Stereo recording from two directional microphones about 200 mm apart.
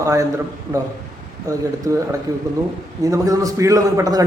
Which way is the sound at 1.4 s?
15° right (ahead or behind).